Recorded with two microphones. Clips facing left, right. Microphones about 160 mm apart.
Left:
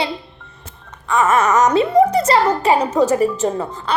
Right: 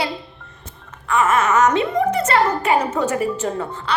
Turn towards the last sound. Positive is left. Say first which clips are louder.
# left 3 dB
turn(degrees=40)  # may be behind; listen again after turning